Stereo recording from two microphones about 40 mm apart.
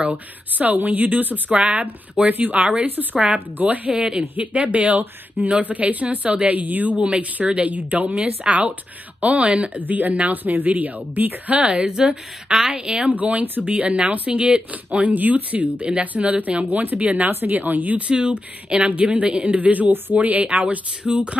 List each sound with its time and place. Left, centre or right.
0.0 s speech: right
3.9 s speech: right
4.4 s speech: right
9.8 s a woman's voice: right
11.6 s speech: right
13.2 s speech: right
17.3 s a woman's voice: right
17.6 s a woman's voice: right
18.1 s speech: right